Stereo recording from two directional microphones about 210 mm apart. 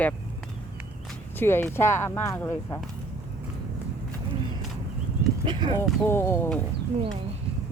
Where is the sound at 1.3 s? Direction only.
10° left (ahead or behind).